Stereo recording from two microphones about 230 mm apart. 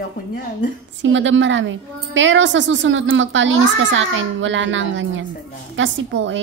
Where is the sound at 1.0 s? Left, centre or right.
Right.